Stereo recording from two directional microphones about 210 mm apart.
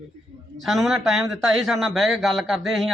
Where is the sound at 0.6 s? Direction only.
Centre (ahead or behind).